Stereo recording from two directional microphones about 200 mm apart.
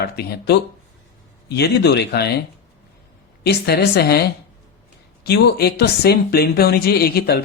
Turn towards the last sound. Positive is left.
turn(degrees=50)  # may be behind; listen again after turning